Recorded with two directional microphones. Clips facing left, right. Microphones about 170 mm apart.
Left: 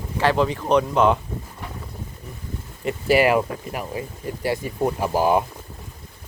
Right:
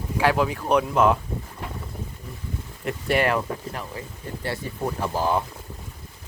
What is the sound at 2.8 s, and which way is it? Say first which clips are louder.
Speech: left 5 dB; 5° left (ahead or behind).